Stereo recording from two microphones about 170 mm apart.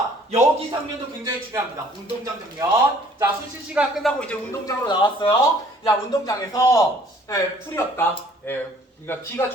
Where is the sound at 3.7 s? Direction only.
Centre (ahead or behind).